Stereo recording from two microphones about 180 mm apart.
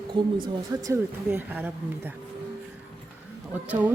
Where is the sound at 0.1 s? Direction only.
25° right (ahead or behind); by 2.1 s 10° right (ahead or behind).